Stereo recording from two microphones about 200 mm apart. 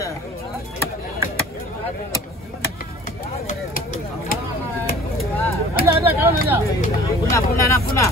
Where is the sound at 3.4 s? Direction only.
40° left (ahead or behind).